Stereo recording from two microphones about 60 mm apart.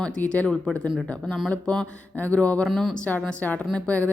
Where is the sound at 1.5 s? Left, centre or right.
Left.